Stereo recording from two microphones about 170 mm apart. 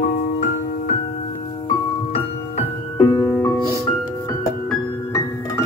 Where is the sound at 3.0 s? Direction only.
30° left (ahead or behind).